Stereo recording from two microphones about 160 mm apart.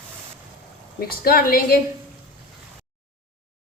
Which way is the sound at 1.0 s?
70° left (ahead or behind).